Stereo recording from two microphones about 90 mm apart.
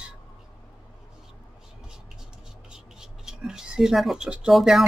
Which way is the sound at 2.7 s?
5° right (ahead or behind).